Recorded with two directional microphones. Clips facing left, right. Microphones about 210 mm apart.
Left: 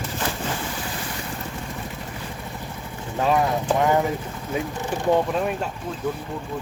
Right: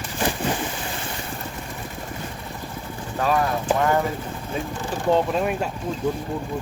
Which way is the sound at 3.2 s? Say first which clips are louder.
Left 1 dB; 20° left (ahead or behind).